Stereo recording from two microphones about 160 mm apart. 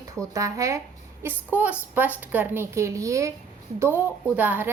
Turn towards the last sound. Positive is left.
turn(degrees=-10)  # may be behind; listen again after turning